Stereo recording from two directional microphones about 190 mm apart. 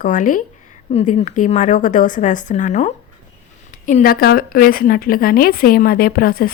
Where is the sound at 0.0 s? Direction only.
45° left (ahead or behind).